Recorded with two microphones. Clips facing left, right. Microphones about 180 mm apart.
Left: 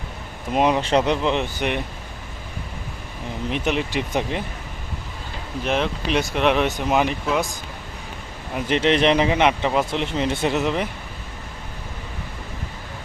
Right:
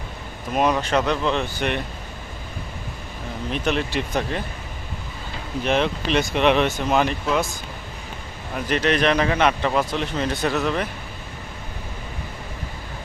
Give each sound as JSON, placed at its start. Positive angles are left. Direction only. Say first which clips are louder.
{"t": 0.5, "sound": "speech", "louder": "left 2 dB", "side_deg": 20}
{"t": 3.5, "sound": "speech", "louder": "even", "side_deg": 15}
{"t": 5.6, "sound": "speech", "louder": "right 1 dB", "side_deg": 0}
{"t": 6.7, "sound": "speech", "louder": "even", "side_deg": 15}
{"t": 8.6, "sound": "speech", "louder": "left 2 dB", "side_deg": 25}